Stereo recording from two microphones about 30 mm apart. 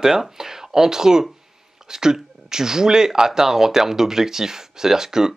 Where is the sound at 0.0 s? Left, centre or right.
Centre.